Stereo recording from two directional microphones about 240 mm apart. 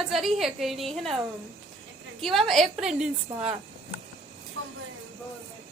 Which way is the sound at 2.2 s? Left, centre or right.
Centre.